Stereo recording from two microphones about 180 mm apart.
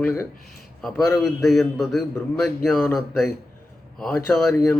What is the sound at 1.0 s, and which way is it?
Speech, 15° left (ahead or behind).